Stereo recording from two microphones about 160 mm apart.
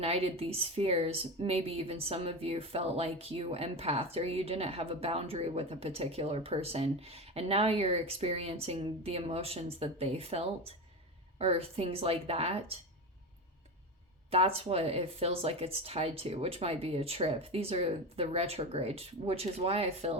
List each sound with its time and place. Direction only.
0.0 s speech: 40° right (ahead or behind)
14.3 s speech: 40° right (ahead or behind)